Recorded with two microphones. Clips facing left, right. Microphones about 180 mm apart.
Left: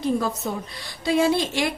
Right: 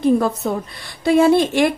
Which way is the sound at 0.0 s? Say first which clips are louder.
Right 7 dB; 55° right (ahead or behind).